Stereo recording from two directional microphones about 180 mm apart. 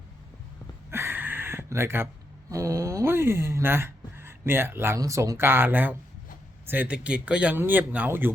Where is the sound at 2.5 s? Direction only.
15° right (ahead or behind).